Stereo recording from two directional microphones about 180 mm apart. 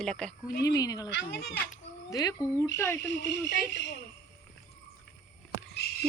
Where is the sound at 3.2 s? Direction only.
75° left (ahead or behind).